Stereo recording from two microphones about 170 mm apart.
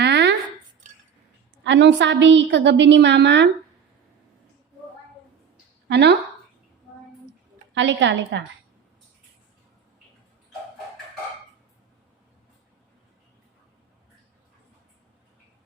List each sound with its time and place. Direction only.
0.0 s a sound: 90° right
1.6 s a woman's voice: 90° right
5.9 s a woman's voice: 90° right
7.7 s a woman's voice: 90° right